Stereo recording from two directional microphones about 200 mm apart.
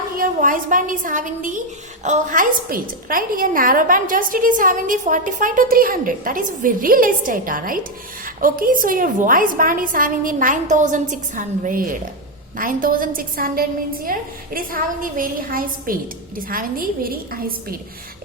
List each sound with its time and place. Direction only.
0.2 s a woman's voice: 40° right (ahead or behind)